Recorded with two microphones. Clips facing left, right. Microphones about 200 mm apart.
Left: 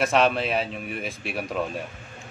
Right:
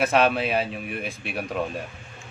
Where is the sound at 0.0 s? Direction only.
Centre (ahead or behind).